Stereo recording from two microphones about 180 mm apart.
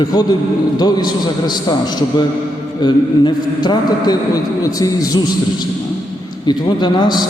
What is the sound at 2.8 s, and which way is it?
A man's voice, 25° left (ahead or behind).